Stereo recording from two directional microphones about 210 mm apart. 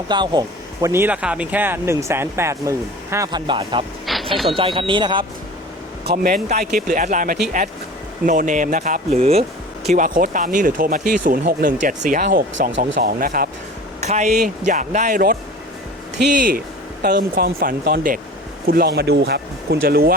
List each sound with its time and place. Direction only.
0.1 s speech: 20° right (ahead or behind)
4.0 s a sound: centre (ahead or behind)
4.5 s speech: 25° right (ahead or behind)
6.1 s speech: 40° right (ahead or behind)
17.0 s speech: 45° right (ahead or behind)